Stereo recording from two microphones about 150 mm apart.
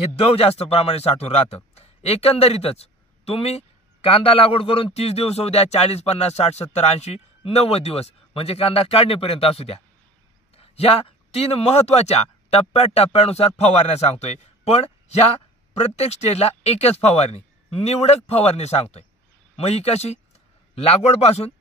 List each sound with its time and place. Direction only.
0.2 s a man's voice: 40° left (ahead or behind)